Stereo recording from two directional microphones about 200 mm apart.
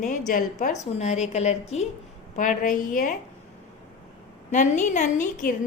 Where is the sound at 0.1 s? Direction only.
40° left (ahead or behind).